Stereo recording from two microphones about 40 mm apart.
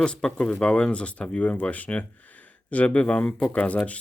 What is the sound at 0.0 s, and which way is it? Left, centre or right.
Speech, left.